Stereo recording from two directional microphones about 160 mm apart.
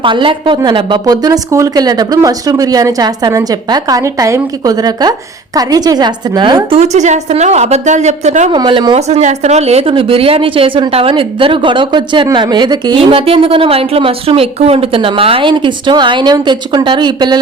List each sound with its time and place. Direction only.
0.0 s a woman's voice: 30° right (ahead or behind)
6.7 s a woman's voice: 45° right (ahead or behind)
8.5 s a woman's voice: 30° right (ahead or behind)
9.0 s a woman's voice: 45° right (ahead or behind); by 17.4 s 25° right (ahead or behind)